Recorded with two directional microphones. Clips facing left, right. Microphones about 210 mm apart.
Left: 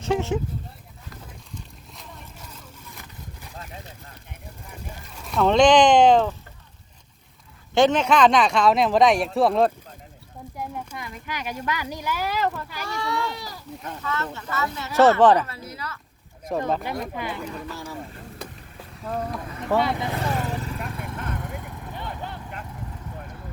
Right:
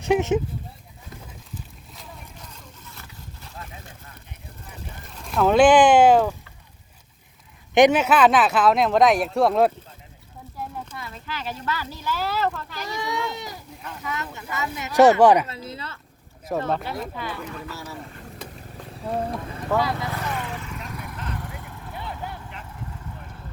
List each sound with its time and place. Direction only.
0.0 s speech: 15° right (ahead or behind)
1.5 s a sound: 5° left (ahead or behind)
5.2 s speech: centre (ahead or behind)
7.7 s speech: 15° right (ahead or behind)
10.6 s a sound: 15° left (ahead or behind)
10.9 s speech: 15° left (ahead or behind)
12.9 s a child's voice: 20° right (ahead or behind)
15.4 s a child's voice: 25° right (ahead or behind)
16.5 s speech: centre (ahead or behind)
16.8 s speech: 15° left (ahead or behind)
19.0 s a child's voice: 30° right (ahead or behind)
19.6 s speech: 20° left (ahead or behind)
20.2 s vehicle: 40° left (ahead or behind)